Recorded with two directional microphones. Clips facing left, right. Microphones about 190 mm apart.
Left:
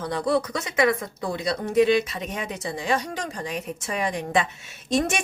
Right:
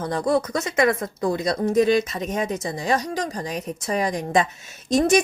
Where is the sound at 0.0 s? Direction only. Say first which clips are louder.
Right 2 dB; 45° right (ahead or behind).